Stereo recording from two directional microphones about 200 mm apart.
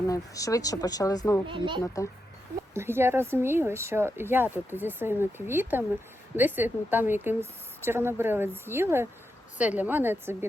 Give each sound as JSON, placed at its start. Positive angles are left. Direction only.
{"t": 0.1, "sound": "speech", "side_deg": 15}
{"t": 1.5, "sound": "speech", "side_deg": -25}
{"t": 2.7, "sound": "speech", "side_deg": -10}